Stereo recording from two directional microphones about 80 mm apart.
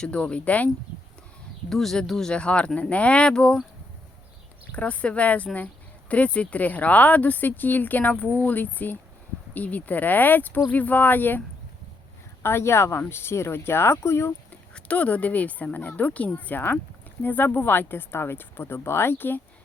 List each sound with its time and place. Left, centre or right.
0.0 s speech: centre
1.7 s speech: centre
4.7 s speech: centre; by 14.3 s left
14.5 s speech: centre